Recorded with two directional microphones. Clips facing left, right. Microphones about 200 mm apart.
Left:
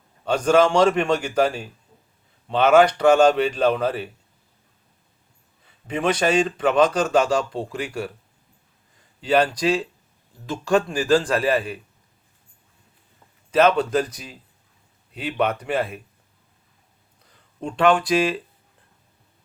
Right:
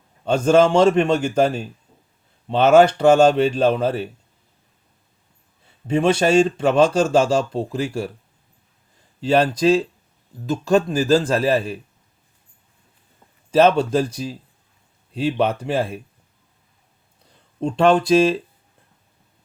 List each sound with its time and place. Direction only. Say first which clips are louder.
0.3 s speech: right 3 dB; 25° right (ahead or behind)
2.6 s speech: right 3 dB; 25° right (ahead or behind)
5.9 s speech: right 4 dB; 30° right (ahead or behind)
9.2 s speech: right 3 dB; 25° right (ahead or behind)
13.5 s speech: right 3 dB; 30° right (ahead or behind)
17.6 s speech: right 3 dB; 25° right (ahead or behind)